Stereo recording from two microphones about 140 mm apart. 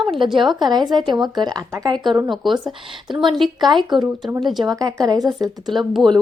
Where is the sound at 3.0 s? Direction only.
35° right (ahead or behind).